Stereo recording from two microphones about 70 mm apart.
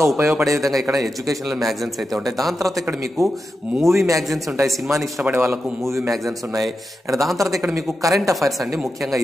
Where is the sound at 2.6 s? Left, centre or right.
Right.